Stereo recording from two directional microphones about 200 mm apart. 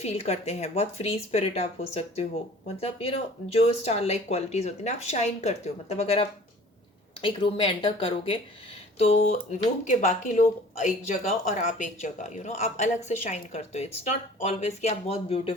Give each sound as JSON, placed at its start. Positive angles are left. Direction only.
{"t": 0.0, "sound": "speech", "side_deg": 30}